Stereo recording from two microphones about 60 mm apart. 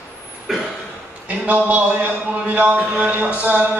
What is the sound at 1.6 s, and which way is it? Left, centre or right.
Speech, right.